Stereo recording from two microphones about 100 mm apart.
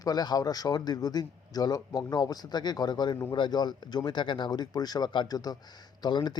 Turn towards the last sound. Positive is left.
turn(degrees=50)  # may be behind; listen again after turning